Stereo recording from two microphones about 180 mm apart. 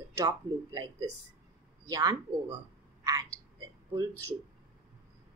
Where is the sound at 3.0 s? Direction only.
20° right (ahead or behind).